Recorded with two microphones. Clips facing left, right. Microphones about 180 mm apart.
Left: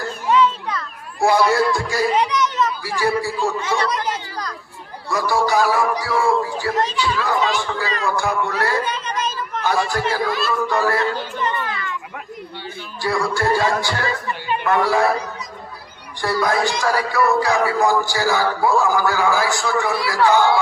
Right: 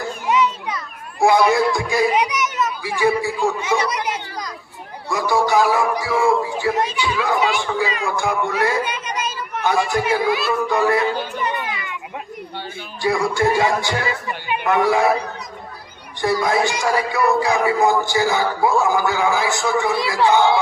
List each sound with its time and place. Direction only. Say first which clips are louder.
0.3 s a sound: left 2 dB; 15° right (ahead or behind)
5.1 s a man's voice: right 1 dB; 20° right (ahead or behind)
13.0 s a man's voice: right 2 dB; 20° right (ahead or behind)
16.2 s speech: right 1 dB; 20° right (ahead or behind)